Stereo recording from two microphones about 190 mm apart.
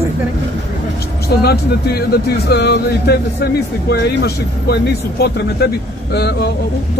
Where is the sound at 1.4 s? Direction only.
55° left (ahead or behind).